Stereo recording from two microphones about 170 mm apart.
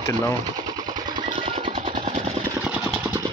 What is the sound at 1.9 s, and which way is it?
Vehicle, 50° right (ahead or behind).